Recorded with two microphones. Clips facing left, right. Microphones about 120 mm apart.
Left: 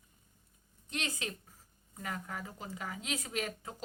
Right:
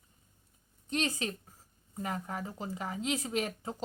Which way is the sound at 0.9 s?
35° right (ahead or behind).